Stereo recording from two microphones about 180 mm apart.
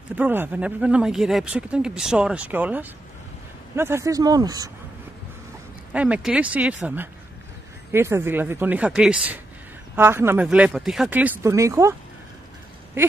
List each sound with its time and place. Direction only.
0.1 s speech: 10° right (ahead or behind)
5.9 s speech: 5° right (ahead or behind)